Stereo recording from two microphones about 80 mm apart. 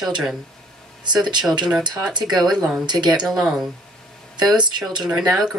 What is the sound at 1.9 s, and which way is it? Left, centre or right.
Speech, centre.